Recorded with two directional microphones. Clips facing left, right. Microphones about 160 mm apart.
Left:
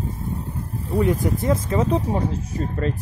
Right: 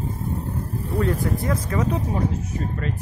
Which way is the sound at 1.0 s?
20° left (ahead or behind).